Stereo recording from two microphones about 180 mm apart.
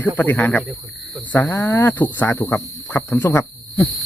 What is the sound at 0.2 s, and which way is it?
Cricket, 10° left (ahead or behind).